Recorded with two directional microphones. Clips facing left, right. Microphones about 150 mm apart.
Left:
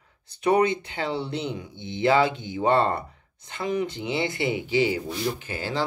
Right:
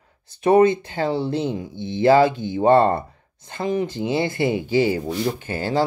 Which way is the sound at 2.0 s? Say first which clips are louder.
Right 6 dB; 40° right (ahead or behind).